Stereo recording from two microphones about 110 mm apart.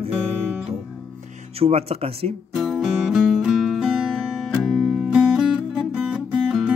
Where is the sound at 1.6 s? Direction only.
65° right (ahead or behind).